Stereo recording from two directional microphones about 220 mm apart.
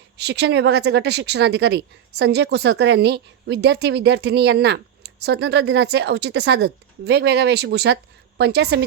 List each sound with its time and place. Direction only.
0.2 s a woman's voice: 50° right (ahead or behind)